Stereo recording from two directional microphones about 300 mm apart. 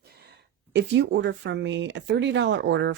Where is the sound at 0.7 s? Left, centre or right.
Right.